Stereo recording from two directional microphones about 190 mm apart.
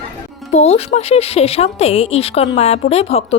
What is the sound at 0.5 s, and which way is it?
A woman's voice, 35° left (ahead or behind).